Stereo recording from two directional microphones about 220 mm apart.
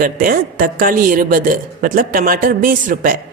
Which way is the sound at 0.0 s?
40° right (ahead or behind).